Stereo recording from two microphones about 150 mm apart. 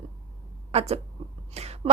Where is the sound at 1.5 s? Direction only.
45° right (ahead or behind).